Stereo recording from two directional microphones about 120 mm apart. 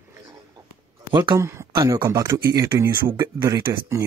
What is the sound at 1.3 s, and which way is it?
Speech, 25° right (ahead or behind).